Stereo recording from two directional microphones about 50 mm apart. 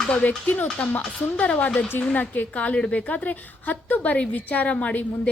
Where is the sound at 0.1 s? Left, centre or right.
Left.